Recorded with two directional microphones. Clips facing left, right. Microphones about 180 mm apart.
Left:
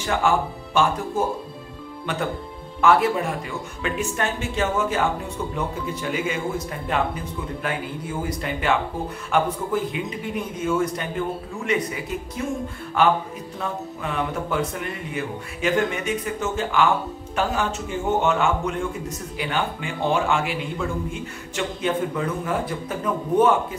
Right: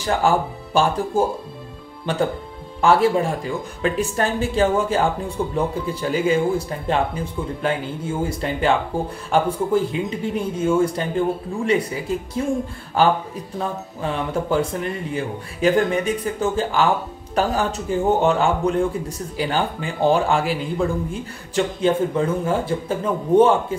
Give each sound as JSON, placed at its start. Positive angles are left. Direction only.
{"t": 0.2, "sound": "a man's voice", "side_deg": -35}
{"t": 2.1, "sound": "a man's voice", "side_deg": -30}